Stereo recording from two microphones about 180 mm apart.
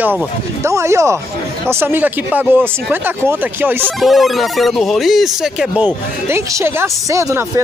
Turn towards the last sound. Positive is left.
turn(degrees=-15)  # may be behind; listen again after turning